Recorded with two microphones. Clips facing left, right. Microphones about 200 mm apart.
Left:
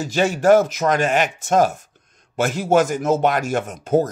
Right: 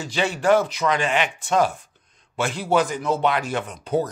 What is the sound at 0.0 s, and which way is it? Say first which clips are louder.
Speech: left 5 dB; 45° left (ahead or behind).